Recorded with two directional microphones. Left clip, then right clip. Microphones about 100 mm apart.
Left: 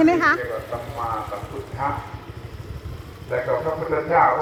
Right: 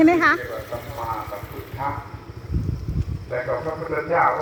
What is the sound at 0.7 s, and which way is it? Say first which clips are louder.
Speech: even; 50° left (ahead or behind).